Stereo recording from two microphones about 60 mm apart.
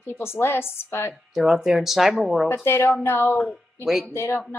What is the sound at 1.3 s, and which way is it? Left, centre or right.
Speech, centre.